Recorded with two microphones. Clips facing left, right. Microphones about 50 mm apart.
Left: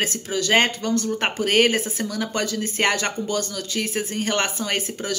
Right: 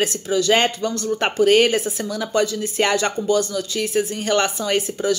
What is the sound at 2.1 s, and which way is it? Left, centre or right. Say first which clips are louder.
Speech: right 5 dB; left.